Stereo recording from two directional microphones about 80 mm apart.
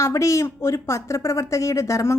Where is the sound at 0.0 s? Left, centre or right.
Left.